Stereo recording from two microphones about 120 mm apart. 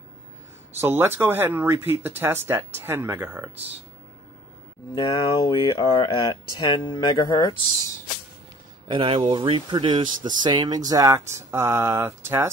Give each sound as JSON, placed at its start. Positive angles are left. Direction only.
{"t": 0.7, "sound": "speech", "side_deg": -20}
{"t": 4.9, "sound": "speech", "side_deg": 35}
{"t": 8.8, "sound": "speech", "side_deg": -45}